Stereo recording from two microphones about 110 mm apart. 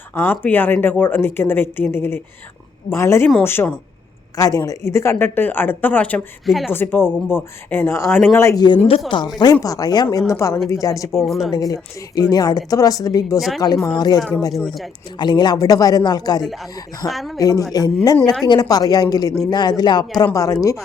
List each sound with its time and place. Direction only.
0.1 s speech: 20° left (ahead or behind)
4.4 s speech: 30° left (ahead or behind); by 6.2 s 15° left (ahead or behind)
6.4 s a woman's voice: centre (ahead or behind)
6.7 s speech: 20° left (ahead or behind)
8.5 s speech: 40° left (ahead or behind)
9.4 s a woman's voice: 35° left (ahead or behind)
11.2 s a woman's voice: centre (ahead or behind)
11.5 s a woman's voice: 35° left (ahead or behind)
15.2 s a woman's voice: 40° left (ahead or behind)
17.1 s a woman's voice: centre (ahead or behind)
17.3 s a woman's voice: 35° left (ahead or behind)